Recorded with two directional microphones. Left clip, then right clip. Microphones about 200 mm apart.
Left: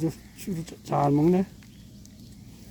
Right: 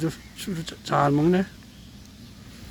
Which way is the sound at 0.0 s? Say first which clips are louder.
Right 1 dB; 15° left (ahead or behind).